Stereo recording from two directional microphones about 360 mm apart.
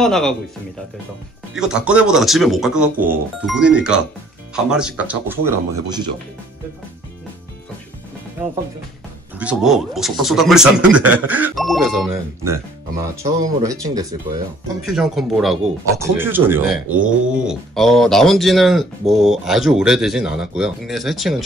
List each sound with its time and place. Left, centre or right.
0.0 s speech: centre
1.5 s speech: centre
9.4 s speech: centre